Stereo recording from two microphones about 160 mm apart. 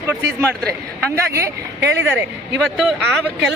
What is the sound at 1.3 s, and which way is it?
Speech, 15° right (ahead or behind).